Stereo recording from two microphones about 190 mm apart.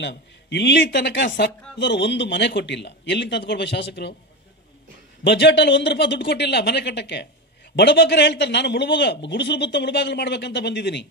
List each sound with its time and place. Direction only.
0.0 s speech: 65° left (ahead or behind)
5.2 s speech: 65° left (ahead or behind)